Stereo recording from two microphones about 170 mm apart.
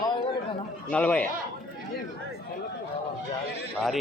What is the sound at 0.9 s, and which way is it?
Speech, 10° left (ahead or behind).